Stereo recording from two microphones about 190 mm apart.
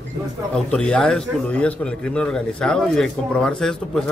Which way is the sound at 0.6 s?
5° left (ahead or behind).